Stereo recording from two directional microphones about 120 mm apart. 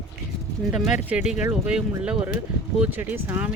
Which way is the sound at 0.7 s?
5° right (ahead or behind).